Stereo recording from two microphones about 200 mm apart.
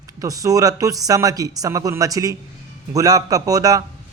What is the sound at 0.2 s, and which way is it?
Speech, 15° right (ahead or behind).